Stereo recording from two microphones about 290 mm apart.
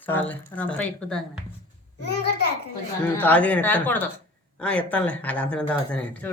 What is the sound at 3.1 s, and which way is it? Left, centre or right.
Speech, centre.